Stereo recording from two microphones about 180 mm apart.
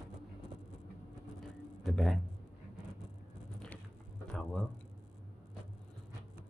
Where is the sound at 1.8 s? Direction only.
Centre (ahead or behind).